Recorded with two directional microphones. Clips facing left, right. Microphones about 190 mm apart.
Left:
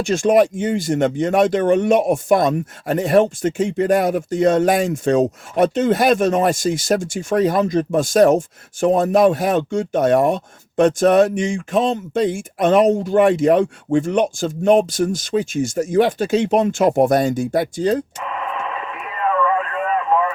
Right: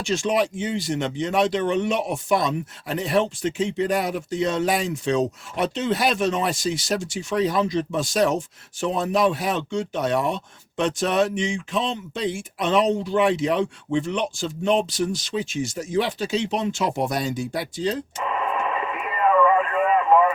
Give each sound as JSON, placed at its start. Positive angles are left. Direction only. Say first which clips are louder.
{"t": 0.0, "sound": "speech", "louder": "left 8 dB", "side_deg": 50}
{"t": 19.0, "sound": "radio", "louder": "right 1 dB", "side_deg": -10}